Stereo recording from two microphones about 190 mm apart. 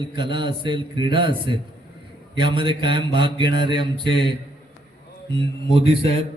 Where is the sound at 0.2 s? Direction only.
25° right (ahead or behind).